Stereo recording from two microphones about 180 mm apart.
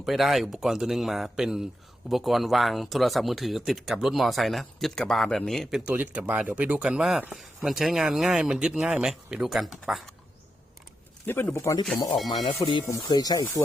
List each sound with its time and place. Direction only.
0.0 s speech: centre (ahead or behind)
11.3 s speech: 15° left (ahead or behind)